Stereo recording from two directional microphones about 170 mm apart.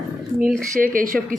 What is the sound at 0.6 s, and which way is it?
Speech, 50° right (ahead or behind).